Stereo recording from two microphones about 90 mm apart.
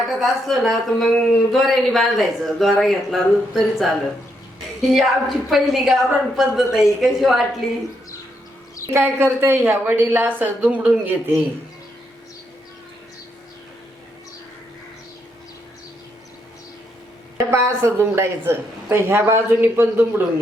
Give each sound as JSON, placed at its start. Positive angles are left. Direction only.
{"t": 0.2, "sound": "a woman's voice", "side_deg": 0}
{"t": 8.9, "sound": "a woman's voice", "side_deg": -30}
{"t": 17.3, "sound": "a woman's voice", "side_deg": -30}